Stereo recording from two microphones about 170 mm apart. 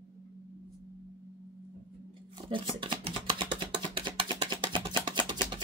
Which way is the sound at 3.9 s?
30° right (ahead or behind).